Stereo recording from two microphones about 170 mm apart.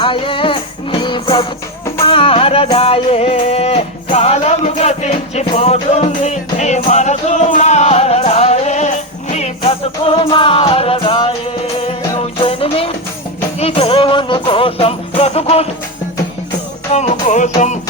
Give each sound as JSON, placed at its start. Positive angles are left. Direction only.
{"t": 0.0, "sound": "music", "side_deg": 30}
{"t": 2.0, "sound": "speech", "side_deg": 30}
{"t": 2.7, "sound": "music", "side_deg": 35}
{"t": 16.9, "sound": "music", "side_deg": 40}